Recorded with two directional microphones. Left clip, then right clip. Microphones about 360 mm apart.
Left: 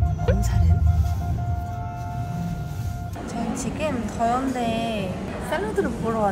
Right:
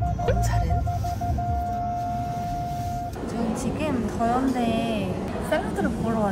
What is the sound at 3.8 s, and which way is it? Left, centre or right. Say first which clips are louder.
Vehicle: left 2 dB; centre.